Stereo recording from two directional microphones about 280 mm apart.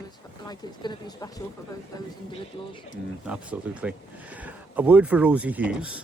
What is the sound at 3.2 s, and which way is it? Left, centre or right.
Speech, centre.